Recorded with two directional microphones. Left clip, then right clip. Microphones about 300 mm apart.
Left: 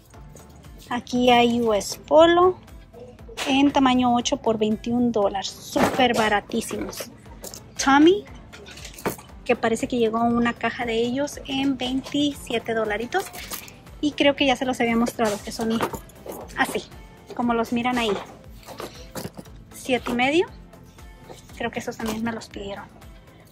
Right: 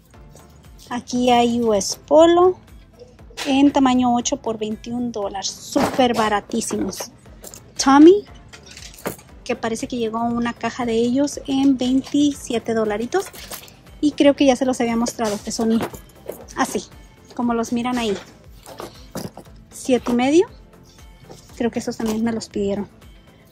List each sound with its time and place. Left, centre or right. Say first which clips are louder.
0.8 s a woman's voice: right 1 dB; centre
3.4 s a woman's voice: right 3 dB; centre
9.0 s keys jangling: left 2 dB; centre
9.8 s a woman's voice: left 1 dB; centre
15.8 s keys jangling: left 1 dB; centre
16.4 s a woman's voice: right 2 dB; centre
18.8 s horse: right 2 dB; centre
19.8 s a woman's voice: right 3 dB; centre
21.5 s a woman's voice: right 5 dB; centre